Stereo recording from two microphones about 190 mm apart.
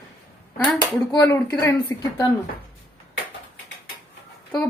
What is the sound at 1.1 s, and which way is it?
Speech, 15° left (ahead or behind).